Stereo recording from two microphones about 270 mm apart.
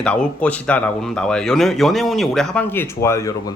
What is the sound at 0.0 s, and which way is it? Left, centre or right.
Speech, centre.